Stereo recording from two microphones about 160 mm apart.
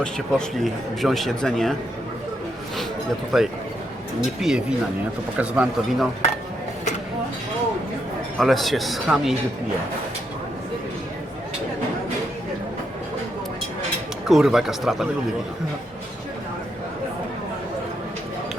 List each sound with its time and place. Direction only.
0.0 s speech: centre (ahead or behind)
3.3 s speech: centre (ahead or behind)
8.4 s speech: centre (ahead or behind)
14.3 s speech: 5° right (ahead or behind)